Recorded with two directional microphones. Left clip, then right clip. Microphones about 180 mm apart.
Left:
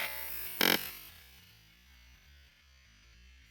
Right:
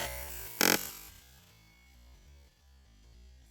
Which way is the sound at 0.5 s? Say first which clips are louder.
Right 1 dB; 15° right (ahead or behind).